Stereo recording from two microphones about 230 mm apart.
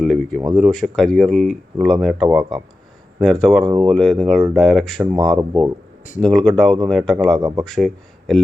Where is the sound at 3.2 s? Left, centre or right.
Centre.